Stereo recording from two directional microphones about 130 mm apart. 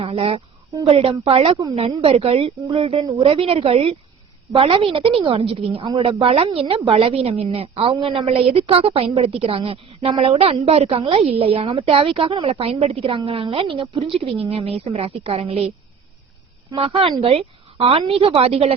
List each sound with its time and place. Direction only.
0.0 s a woman's voice: 45° right (ahead or behind)
16.7 s a woman's voice: 45° right (ahead or behind)